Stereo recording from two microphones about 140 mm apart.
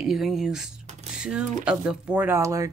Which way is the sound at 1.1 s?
5° right (ahead or behind).